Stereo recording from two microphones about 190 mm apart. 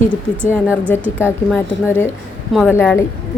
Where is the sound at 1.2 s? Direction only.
10° left (ahead or behind).